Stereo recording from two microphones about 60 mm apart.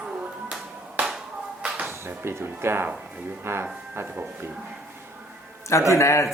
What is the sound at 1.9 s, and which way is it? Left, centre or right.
Speech, right.